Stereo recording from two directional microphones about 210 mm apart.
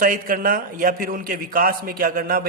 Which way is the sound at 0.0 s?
40° right (ahead or behind).